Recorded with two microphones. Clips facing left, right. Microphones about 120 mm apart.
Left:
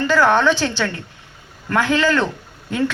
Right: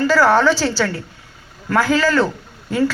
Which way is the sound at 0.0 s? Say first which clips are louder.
Right 2 dB; 5° right (ahead or behind).